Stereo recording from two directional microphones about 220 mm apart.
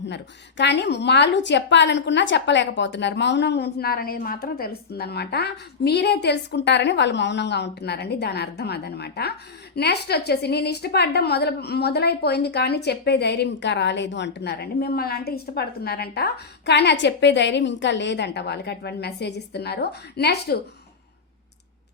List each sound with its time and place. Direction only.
0.1 s a woman's voice: 50° left (ahead or behind)